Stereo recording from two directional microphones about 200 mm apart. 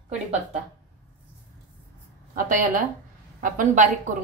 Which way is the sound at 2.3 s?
40° right (ahead or behind).